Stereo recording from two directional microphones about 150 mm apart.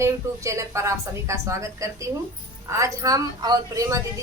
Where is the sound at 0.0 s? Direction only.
20° right (ahead or behind).